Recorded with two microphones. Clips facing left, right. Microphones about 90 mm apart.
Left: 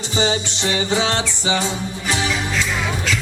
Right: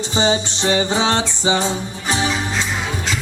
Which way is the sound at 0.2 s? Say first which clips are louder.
Right 2 dB; 25° right (ahead or behind).